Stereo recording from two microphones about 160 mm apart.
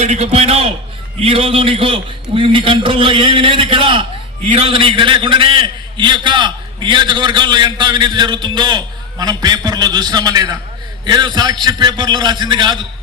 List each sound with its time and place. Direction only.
0.0 s a man's voice: 40° right (ahead or behind)